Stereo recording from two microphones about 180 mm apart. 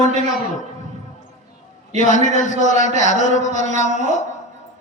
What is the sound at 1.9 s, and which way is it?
Speech, 40° right (ahead or behind).